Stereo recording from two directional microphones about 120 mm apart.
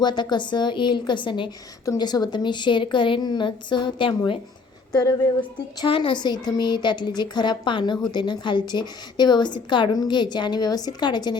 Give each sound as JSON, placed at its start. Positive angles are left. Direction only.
{"t": 0.0, "sound": "a woman's voice", "side_deg": 40}
{"t": 4.9, "sound": "speech", "side_deg": 30}
{"t": 5.5, "sound": "a woman's voice", "side_deg": 40}